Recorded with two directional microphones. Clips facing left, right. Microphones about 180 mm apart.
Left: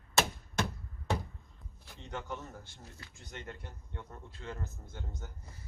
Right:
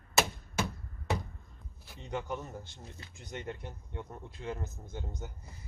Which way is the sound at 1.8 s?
10° right (ahead or behind).